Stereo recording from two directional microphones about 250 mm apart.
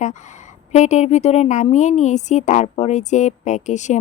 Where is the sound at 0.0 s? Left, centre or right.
Left.